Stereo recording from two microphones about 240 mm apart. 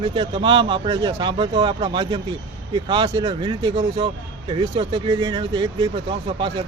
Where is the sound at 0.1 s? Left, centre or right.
Right.